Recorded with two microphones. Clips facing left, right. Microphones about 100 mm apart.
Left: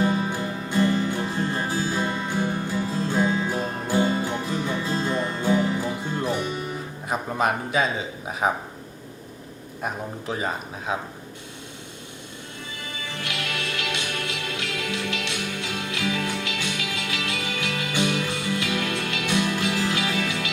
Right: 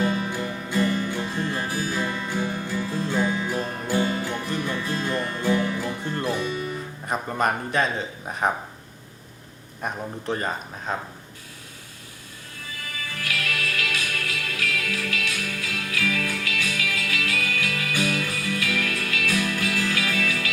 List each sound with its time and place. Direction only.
0.0 s music: 20° left (ahead or behind)
6.3 s music: 20° left (ahead or behind)
7.1 s a man's voice: centre (ahead or behind)
9.8 s a man's voice: centre (ahead or behind)
12.5 s music: 25° left (ahead or behind)